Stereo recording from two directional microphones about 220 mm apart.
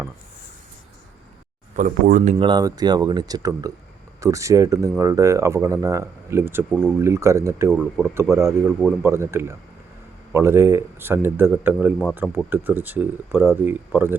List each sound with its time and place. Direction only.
1.7 s speech: 35° right (ahead or behind)
2.4 s a man's voice: 20° right (ahead or behind)
7.7 s speech: centre (ahead or behind)
8.0 s a man's voice: 10° right (ahead or behind)